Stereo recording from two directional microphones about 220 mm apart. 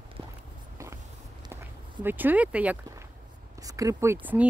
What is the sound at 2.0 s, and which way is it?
Speech, 10° right (ahead or behind).